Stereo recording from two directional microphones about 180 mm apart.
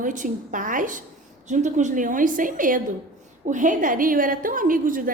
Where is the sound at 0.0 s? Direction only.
45° right (ahead or behind).